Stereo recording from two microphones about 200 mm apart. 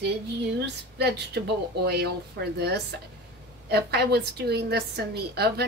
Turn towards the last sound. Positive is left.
turn(degrees=-55)  # may be behind; listen again after turning